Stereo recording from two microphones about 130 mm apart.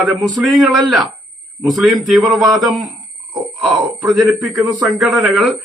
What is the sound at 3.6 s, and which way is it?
Speech, 10° right (ahead or behind).